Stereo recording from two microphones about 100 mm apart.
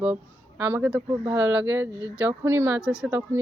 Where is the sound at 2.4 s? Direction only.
25° right (ahead or behind).